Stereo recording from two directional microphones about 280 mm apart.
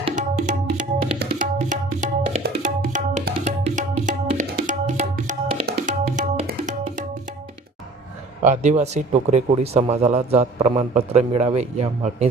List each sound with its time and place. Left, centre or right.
0.0 s tabla: right
8.4 s speech: right